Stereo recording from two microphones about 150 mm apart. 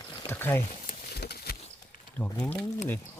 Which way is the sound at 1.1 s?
90° left.